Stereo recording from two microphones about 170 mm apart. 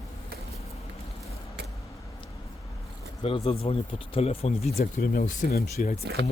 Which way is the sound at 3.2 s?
35° left (ahead or behind).